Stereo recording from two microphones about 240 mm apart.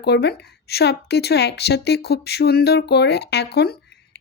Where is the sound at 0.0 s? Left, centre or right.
Left.